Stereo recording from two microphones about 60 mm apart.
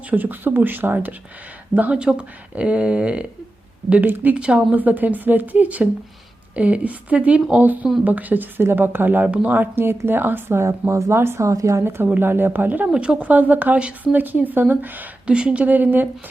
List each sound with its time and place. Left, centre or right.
0.1 s a woman's voice: right
2.0 s speech: centre
4.0 s a woman's voice: right
9.7 s speech: right
10.6 s speech: right
11.4 s a woman's voice: right
11.8 s speech: right
12.9 s a woman's voice: centre
15.3 s speech: centre
15.6 s a woman's voice: right